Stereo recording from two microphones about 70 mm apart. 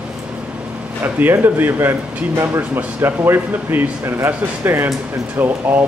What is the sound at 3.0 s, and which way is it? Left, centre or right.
Speech, right.